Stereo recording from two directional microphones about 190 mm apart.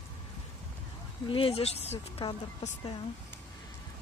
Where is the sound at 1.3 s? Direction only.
30° left (ahead or behind).